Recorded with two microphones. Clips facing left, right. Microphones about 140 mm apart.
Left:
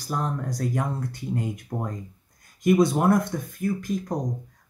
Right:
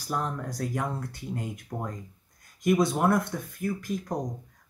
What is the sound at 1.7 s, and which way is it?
Speech, 30° left (ahead or behind).